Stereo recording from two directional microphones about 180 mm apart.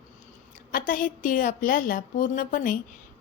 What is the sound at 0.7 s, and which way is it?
A woman's voice, 50° left (ahead or behind).